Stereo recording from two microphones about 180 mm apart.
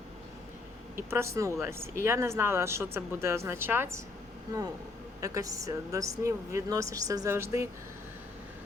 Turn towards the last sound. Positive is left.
turn(degrees=-15)  # may be behind; listen again after turning